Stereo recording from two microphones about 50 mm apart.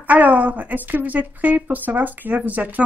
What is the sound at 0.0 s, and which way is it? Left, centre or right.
A woman's voice, right.